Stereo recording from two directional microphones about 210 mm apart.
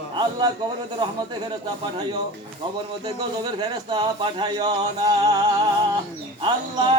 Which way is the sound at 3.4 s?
20° right (ahead or behind).